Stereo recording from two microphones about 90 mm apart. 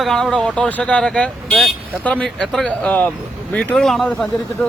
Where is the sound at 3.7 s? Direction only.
5° left (ahead or behind).